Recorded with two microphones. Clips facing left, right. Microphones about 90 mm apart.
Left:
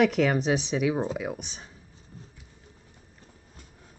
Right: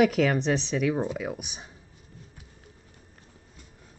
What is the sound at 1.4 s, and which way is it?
Speech, 15° right (ahead or behind).